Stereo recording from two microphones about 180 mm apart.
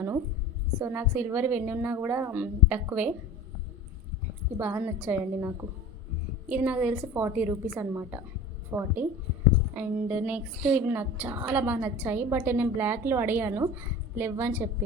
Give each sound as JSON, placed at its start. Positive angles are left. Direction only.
{"t": 0.8, "sound": "a woman's voice", "side_deg": -10}
{"t": 4.5, "sound": "a woman's voice", "side_deg": -10}